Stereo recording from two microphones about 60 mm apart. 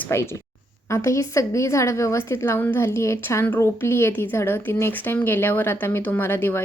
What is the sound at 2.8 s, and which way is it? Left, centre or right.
A woman's voice, left.